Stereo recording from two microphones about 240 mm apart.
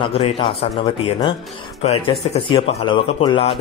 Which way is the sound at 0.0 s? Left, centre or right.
Left.